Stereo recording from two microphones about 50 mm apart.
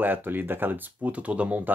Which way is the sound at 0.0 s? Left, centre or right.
Right.